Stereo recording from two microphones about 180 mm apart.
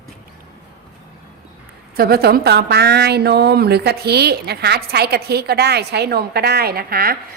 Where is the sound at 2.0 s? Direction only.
60° right (ahead or behind).